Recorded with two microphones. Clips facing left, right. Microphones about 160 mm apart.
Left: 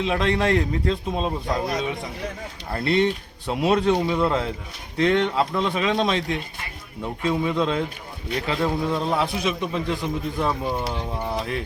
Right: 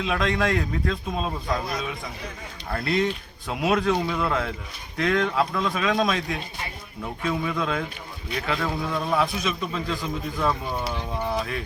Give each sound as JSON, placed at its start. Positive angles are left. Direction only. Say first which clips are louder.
{"t": 0.0, "sound": "a man's voice", "louder": "left 2 dB", "side_deg": 30}
{"t": 2.7, "sound": "a man's voice", "louder": "left 3 dB", "side_deg": 30}
{"t": 7.3, "sound": "a man's voice", "louder": "left 4 dB", "side_deg": 25}